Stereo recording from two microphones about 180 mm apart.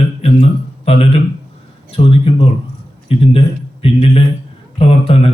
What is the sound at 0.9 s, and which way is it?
Speech, 35° left (ahead or behind).